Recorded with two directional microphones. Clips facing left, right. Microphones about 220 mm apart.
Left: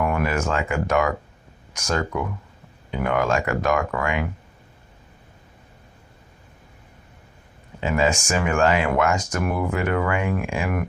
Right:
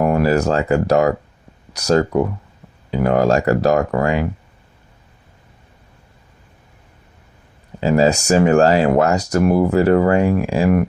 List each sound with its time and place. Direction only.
0.0 s speech: 35° right (ahead or behind)
7.8 s speech: 35° right (ahead or behind)